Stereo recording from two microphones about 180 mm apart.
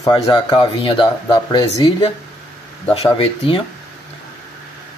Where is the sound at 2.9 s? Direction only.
30° left (ahead or behind).